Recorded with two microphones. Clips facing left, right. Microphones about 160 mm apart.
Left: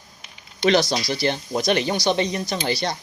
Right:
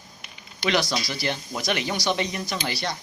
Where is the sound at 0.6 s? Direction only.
30° left (ahead or behind).